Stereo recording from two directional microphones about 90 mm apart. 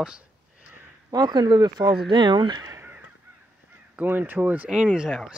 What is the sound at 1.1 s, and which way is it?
Speech, 50° right (ahead or behind).